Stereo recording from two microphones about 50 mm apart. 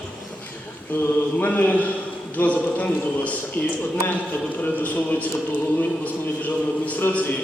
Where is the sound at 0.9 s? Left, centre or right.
Left.